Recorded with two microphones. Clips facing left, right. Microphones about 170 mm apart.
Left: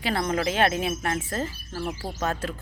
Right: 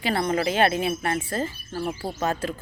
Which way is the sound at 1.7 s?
15° right (ahead or behind).